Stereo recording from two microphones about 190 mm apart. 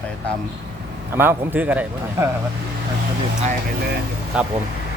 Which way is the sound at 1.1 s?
10° right (ahead or behind).